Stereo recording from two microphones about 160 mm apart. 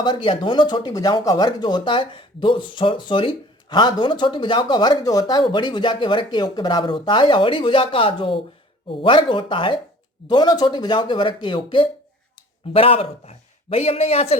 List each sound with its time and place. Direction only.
0.0 s a man's voice: 30° left (ahead or behind)